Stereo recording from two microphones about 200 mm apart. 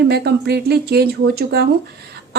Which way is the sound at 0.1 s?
55° right (ahead or behind).